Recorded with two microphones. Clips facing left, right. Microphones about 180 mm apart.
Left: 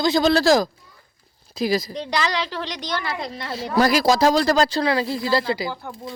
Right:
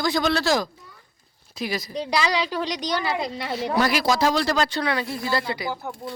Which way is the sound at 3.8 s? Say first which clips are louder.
Left 5 dB; 40° left (ahead or behind).